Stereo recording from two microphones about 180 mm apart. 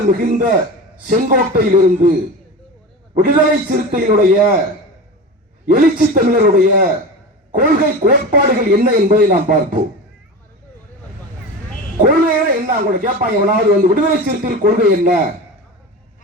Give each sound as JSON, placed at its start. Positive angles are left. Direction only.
{"t": 0.2, "sound": "a man's voice", "side_deg": -50}
{"t": 3.2, "sound": "a man's voice", "side_deg": -55}
{"t": 5.6, "sound": "a man's voice", "side_deg": -55}
{"t": 11.9, "sound": "a man's voice", "side_deg": -50}